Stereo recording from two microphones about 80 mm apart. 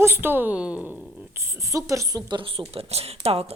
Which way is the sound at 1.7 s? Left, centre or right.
Right.